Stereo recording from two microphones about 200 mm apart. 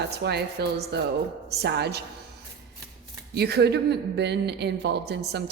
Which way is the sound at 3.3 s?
55° right (ahead or behind).